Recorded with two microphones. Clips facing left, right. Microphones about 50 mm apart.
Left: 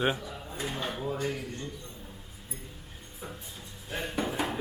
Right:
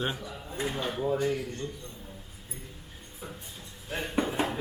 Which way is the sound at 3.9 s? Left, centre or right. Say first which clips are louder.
Right 1 dB; centre.